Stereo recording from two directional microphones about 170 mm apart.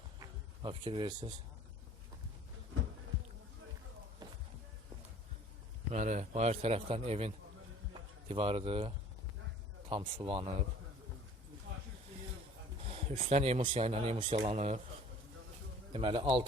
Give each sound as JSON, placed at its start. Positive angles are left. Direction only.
{"t": 0.2, "sound": "a sound", "side_deg": -30}
{"t": 4.2, "sound": "a sound", "side_deg": -25}
{"t": 5.9, "sound": "speech", "side_deg": -45}
{"t": 9.9, "sound": "speech", "side_deg": -30}
{"t": 12.8, "sound": "speech", "side_deg": -35}
{"t": 15.9, "sound": "a man's voice", "side_deg": -30}